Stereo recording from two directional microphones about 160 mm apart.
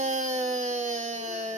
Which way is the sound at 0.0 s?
50° right (ahead or behind).